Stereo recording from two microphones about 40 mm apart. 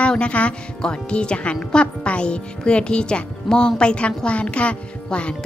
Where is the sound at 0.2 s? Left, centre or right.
Left.